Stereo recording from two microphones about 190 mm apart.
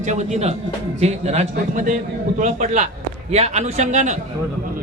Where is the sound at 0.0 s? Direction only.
40° right (ahead or behind).